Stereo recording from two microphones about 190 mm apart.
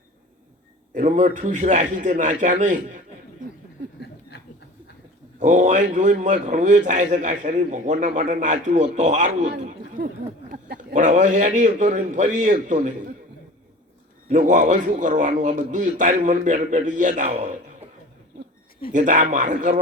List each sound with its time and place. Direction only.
0.9 s a man's voice: 40° right (ahead or behind)
5.4 s a man's voice: 40° right (ahead or behind)
14.3 s a man's voice: 45° right (ahead or behind)
18.9 s a man's voice: 40° right (ahead or behind)